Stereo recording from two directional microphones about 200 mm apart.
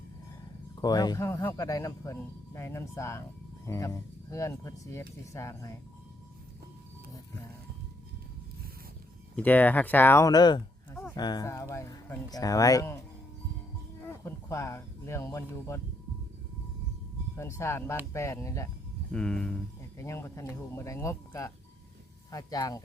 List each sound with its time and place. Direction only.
0.8 s speech: 20° left (ahead or behind)
9.3 s speech: 10° left (ahead or behind)
14.0 s speech: 10° left (ahead or behind)
17.3 s speech: 15° left (ahead or behind)
19.1 s speech: 5° left (ahead or behind)